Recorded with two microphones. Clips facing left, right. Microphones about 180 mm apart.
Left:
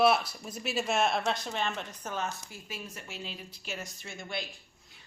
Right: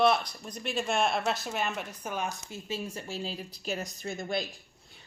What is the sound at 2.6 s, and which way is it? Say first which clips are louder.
Speech: right 8 dB; 30° right (ahead or behind).